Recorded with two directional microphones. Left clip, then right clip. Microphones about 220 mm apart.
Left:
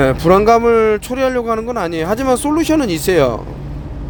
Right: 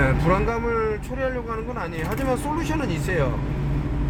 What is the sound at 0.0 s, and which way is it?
Speech, 50° left (ahead or behind).